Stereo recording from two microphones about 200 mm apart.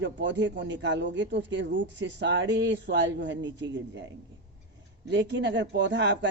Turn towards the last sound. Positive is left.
turn(degrees=-60)  # may be behind; listen again after turning